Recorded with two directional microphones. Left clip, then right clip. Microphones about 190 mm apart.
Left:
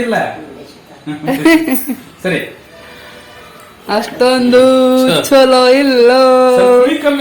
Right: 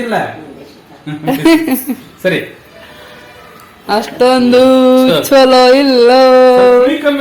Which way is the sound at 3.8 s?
5° right (ahead or behind).